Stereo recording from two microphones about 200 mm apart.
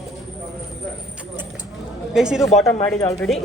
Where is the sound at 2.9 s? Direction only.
15° left (ahead or behind).